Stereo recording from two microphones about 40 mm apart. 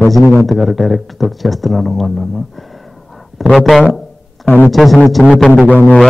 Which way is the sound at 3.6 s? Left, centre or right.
Centre.